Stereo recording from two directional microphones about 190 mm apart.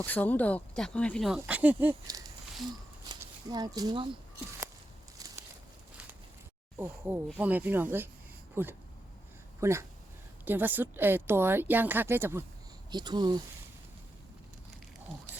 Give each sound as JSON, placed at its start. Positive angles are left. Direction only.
{"t": 0.0, "sound": "speech", "side_deg": 10}
{"t": 3.1, "sound": "speech", "side_deg": -20}
{"t": 6.7, "sound": "speech", "side_deg": -10}